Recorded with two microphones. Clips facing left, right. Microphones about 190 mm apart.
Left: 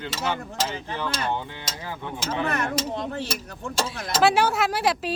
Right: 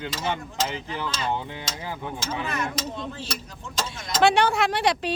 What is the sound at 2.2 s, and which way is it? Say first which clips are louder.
Speech: left 4 dB; 60° left (ahead or behind).